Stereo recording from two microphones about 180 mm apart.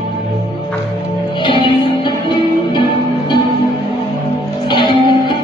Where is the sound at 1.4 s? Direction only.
25° left (ahead or behind).